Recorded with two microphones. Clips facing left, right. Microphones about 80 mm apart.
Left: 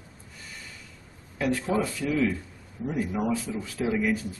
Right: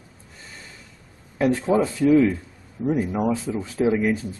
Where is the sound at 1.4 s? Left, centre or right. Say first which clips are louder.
Right 6 dB; right.